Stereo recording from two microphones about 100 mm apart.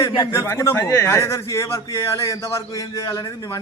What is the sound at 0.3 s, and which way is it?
A man's voice, 25° left (ahead or behind).